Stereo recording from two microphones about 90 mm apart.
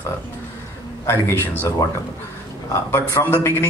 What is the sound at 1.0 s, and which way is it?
Speech, 30° left (ahead or behind).